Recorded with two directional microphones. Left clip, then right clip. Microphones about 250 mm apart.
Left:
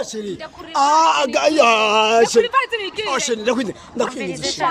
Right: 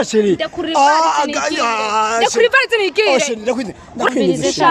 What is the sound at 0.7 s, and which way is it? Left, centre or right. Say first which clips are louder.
A man's voice: right 2 dB; centre.